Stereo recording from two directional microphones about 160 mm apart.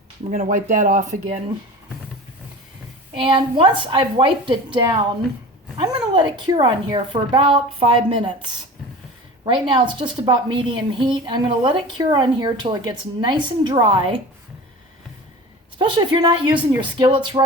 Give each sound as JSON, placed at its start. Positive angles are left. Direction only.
{"t": 0.3, "sound": "speech", "side_deg": -50}
{"t": 3.2, "sound": "a woman's voice", "side_deg": -30}
{"t": 9.4, "sound": "a woman's voice", "side_deg": -30}
{"t": 15.8, "sound": "a woman's voice", "side_deg": -30}